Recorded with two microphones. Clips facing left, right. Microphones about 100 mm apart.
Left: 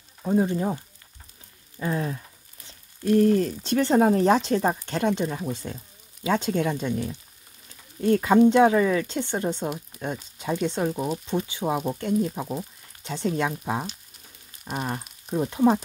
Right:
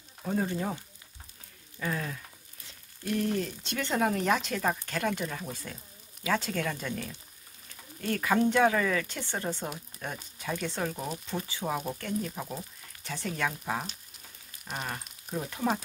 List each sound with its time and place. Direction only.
0.2 s speech: 20° left (ahead or behind)
1.8 s a sound: 30° left (ahead or behind)
6.2 s speech: 20° left (ahead or behind)
14.7 s frying: 20° left (ahead or behind)
15.2 s speech: 20° left (ahead or behind)